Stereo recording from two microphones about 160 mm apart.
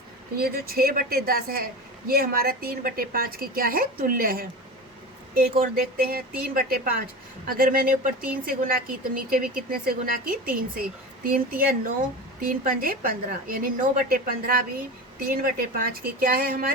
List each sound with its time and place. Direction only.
0.3 s a woman's voice: 70° right (ahead or behind)